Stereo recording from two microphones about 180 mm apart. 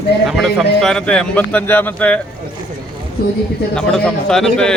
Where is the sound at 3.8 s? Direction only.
5° left (ahead or behind).